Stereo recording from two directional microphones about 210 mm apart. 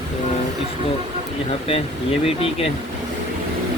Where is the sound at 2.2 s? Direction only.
30° left (ahead or behind).